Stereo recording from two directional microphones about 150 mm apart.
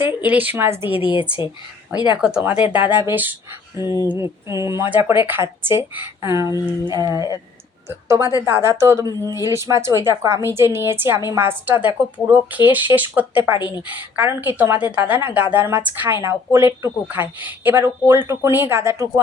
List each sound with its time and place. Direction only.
0.0 s a woman's voice: 10° right (ahead or behind)
1.0 s speech: 35° left (ahead or behind)
2.1 s a woman's voice: 5° right (ahead or behind)
6.5 s speech: 25° left (ahead or behind)
6.9 s a woman's voice: 25° right (ahead or behind)